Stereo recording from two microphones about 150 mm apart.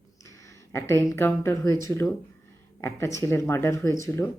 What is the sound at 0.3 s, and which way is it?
A woman's voice, 20° left (ahead or behind).